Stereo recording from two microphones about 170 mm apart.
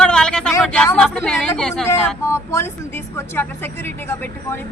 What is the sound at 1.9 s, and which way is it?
Speech, 15° left (ahead or behind).